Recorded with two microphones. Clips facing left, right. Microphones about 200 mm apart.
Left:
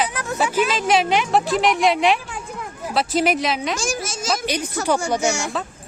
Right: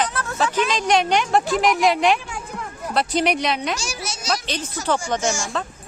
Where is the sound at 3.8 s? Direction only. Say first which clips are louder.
Left 6 dB; 50° left (ahead or behind).